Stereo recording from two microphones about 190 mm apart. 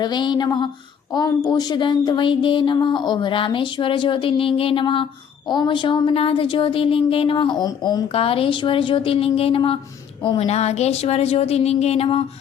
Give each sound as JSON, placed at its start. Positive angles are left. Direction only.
{"t": 0.0, "sound": "a woman's voice", "side_deg": 25}